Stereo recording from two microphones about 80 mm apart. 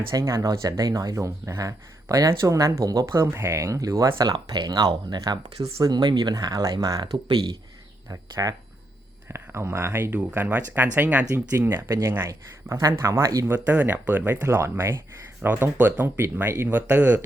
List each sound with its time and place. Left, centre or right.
0.1 s speech: right
4.3 s speech: right
8.1 s speech: right
9.3 s speech: right
13.7 s speech: right